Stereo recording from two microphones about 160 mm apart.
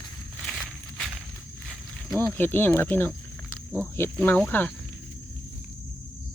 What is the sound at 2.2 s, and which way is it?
Speech, 15° left (ahead or behind).